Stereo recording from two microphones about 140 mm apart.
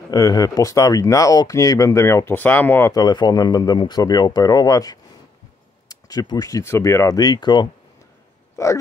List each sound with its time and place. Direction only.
0.1 s speech: 25° left (ahead or behind)
2.9 s speech: 30° left (ahead or behind)
8.6 s speech: 20° left (ahead or behind)